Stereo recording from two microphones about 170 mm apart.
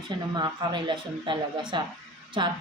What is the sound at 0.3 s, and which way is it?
Speech, 25° right (ahead or behind).